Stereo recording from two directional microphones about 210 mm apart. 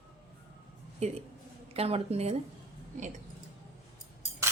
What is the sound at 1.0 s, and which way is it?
A woman's voice, 30° right (ahead or behind).